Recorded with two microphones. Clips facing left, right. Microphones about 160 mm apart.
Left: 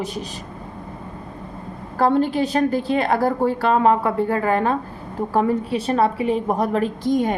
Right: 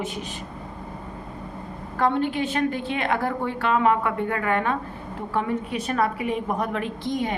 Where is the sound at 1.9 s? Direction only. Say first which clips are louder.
Left 5 dB; 35° left (ahead or behind).